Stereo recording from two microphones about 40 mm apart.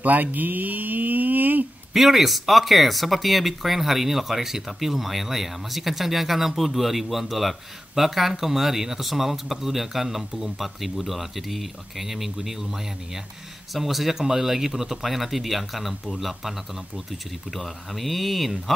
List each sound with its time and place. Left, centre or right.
0.0 s speech: right
2.0 s speech: centre